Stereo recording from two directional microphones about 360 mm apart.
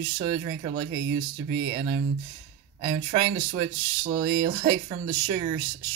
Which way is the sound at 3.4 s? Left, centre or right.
Right.